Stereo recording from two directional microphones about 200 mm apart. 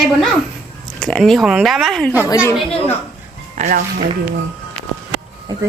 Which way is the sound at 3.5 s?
40° right (ahead or behind).